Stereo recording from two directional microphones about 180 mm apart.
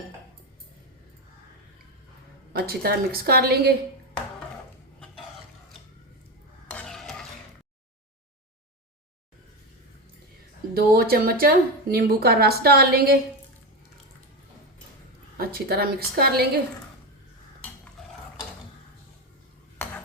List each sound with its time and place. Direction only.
2.5 s a woman's voice: 60° right (ahead or behind)
6.7 s stir: 5° left (ahead or behind)
10.8 s a woman's voice: 60° right (ahead or behind)
15.4 s a woman's voice: 55° right (ahead or behind)